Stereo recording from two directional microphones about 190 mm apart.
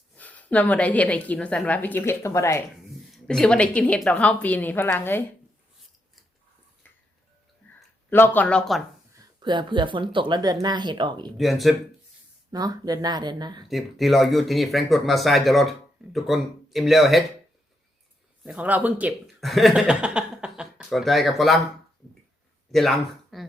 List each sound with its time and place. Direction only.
0.2 s a woman's voice: 10° left (ahead or behind)
3.1 s a woman's voice: 5° left (ahead or behind)
6.8 s music: 10° left (ahead or behind)
7.6 s a sound: 10° left (ahead or behind)
8.1 s a woman's voice: 10° left (ahead or behind)
9.1 s speech: 25° right (ahead or behind)
11.3 s speech: centre (ahead or behind)
12.5 s speech: 20° right (ahead or behind)
13.7 s speech: centre (ahead or behind)
18.4 s speech: 10° right (ahead or behind)
22.7 s speech: centre (ahead or behind)